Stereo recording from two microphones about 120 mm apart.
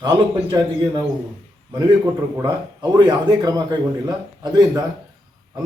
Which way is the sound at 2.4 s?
35° right (ahead or behind).